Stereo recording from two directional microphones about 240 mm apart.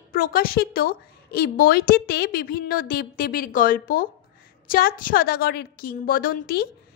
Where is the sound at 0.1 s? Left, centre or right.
Left.